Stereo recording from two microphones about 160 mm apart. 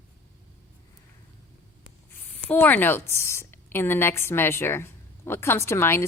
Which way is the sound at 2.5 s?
10° left (ahead or behind).